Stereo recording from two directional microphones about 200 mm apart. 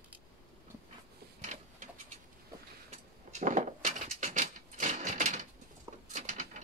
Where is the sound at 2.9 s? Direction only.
40° right (ahead or behind).